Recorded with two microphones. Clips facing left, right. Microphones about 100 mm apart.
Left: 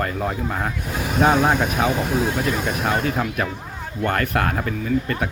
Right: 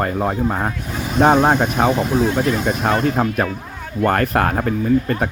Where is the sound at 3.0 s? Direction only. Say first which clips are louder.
Right 5 dB; 35° right (ahead or behind).